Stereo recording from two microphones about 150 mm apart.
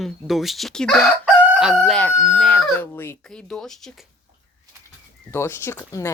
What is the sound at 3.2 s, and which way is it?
Chicken, 5° left (ahead or behind).